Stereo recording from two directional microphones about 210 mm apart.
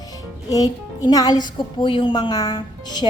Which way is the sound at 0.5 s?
15° left (ahead or behind).